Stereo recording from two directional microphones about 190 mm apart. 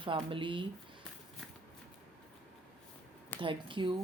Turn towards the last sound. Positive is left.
turn(degrees=-25)  # may be behind; listen again after turning